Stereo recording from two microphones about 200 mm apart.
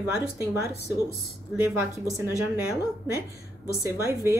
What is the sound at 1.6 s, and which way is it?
Speech, 15° right (ahead or behind).